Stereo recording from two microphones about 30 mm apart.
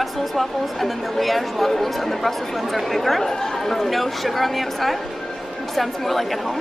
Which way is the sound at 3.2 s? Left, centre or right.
Centre.